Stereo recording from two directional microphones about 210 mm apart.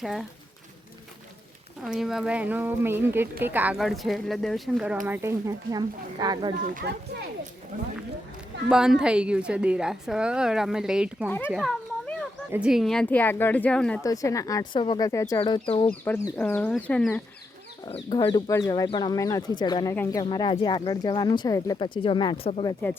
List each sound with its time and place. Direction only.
0.0 s a woman's voice: centre (ahead or behind)
1.8 s a woman's voice: centre (ahead or behind); by 6.5 s 20° right (ahead or behind)
6.8 s speech: 50° right (ahead or behind)
8.7 s a woman's voice: 5° right (ahead or behind)
11.3 s speech: 10° left (ahead or behind)
11.5 s a child's voice: centre (ahead or behind)
14.0 s speech: 15° left (ahead or behind)
15.9 s speech: 10° left (ahead or behind)
17.8 s speech: 25° left (ahead or behind)